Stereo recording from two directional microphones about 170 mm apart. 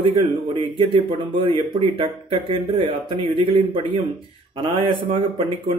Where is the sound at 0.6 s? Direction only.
30° right (ahead or behind).